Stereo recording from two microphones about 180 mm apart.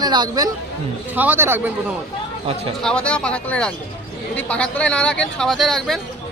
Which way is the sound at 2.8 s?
5° left (ahead or behind).